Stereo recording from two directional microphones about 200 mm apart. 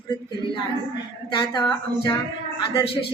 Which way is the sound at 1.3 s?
25° left (ahead or behind).